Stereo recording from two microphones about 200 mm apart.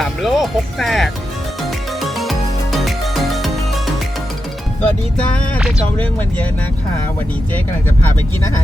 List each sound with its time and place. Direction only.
0.0 s speech: centre (ahead or behind)
2.0 s music: centre (ahead or behind)
4.8 s music: 5° left (ahead or behind)
6.0 s speech: 10° left (ahead or behind)